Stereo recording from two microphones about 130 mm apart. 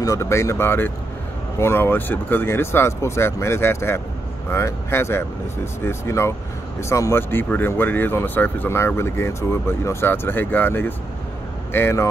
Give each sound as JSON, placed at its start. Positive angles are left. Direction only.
{"t": 0.0, "sound": "speech", "side_deg": 25}